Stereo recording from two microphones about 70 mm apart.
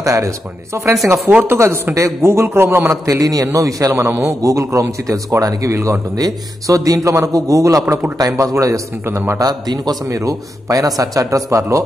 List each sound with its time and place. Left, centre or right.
0.0 s a man's voice: right
2.9 s speech: right
6.1 s speech: right
9.0 s a man's voice: right
9.4 s a man's voice: right
10.0 s speech: right